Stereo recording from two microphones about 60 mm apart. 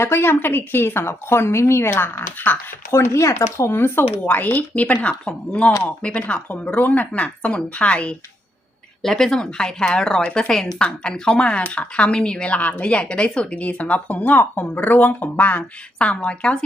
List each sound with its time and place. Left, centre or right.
0.0 s a woman's voice: left
2.9 s speech: left
3.7 s a woman's voice: left
4.5 s speech: left
9.0 s speech: centre
10.2 s speech: left